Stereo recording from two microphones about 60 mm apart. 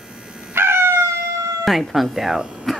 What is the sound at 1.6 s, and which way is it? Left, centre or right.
A child's voice, centre.